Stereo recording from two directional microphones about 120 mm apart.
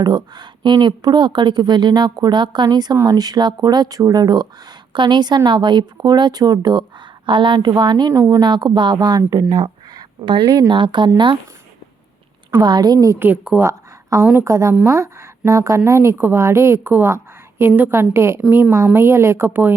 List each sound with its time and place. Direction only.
0.0 s a woman's voice: 35° right (ahead or behind)
8.1 s a woman's voice: 25° right (ahead or behind)
8.4 s a woman's voice: 40° right (ahead or behind)
9.4 s speech: 50° right (ahead or behind)
12.6 s a woman's voice: 35° right (ahead or behind)
13.1 s a woman's voice: 15° right (ahead or behind)
13.7 s a sound: 25° right (ahead or behind)
14.3 s a woman's voice: 25° right (ahead or behind)